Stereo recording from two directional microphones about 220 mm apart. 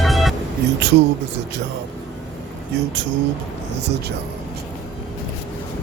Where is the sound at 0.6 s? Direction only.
50° right (ahead or behind).